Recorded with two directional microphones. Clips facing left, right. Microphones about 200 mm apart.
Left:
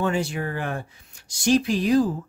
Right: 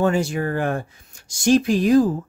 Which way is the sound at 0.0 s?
45° right (ahead or behind).